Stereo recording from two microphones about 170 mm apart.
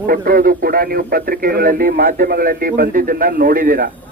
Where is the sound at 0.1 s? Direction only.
60° right (ahead or behind).